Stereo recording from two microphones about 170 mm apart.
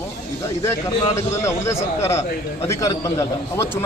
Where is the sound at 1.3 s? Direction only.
15° left (ahead or behind).